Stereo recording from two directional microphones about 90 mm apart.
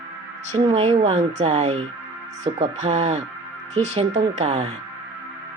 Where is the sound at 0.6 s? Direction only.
90° right.